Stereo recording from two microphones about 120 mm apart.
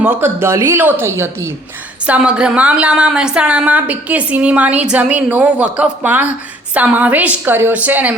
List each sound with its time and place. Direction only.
0.0 s speech: 15° right (ahead or behind)
2.0 s a woman's voice: 10° right (ahead or behind)